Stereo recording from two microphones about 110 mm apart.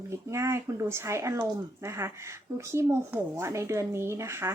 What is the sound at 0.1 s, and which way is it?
Speech, 25° right (ahead or behind).